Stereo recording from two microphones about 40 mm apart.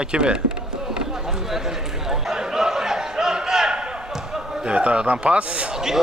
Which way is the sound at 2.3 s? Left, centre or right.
Centre.